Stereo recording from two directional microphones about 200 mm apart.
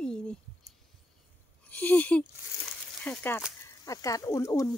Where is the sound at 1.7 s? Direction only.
10° left (ahead or behind).